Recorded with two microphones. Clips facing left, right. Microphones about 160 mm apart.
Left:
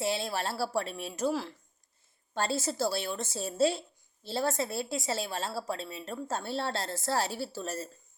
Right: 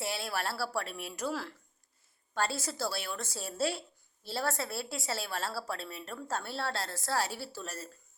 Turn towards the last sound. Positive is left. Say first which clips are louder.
# left 6 dB
turn(degrees=25)  # may be behind; listen again after turning